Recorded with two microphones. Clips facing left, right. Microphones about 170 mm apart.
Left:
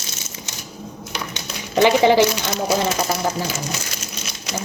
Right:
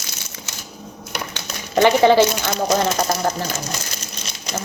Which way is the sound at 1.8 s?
15° left (ahead or behind).